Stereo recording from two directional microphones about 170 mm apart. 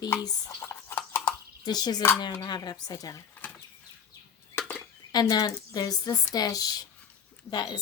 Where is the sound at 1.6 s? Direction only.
25° left (ahead or behind).